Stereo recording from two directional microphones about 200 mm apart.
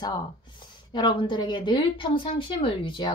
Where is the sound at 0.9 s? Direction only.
25° left (ahead or behind).